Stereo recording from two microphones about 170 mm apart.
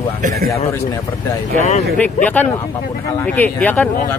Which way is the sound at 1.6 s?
40° left (ahead or behind).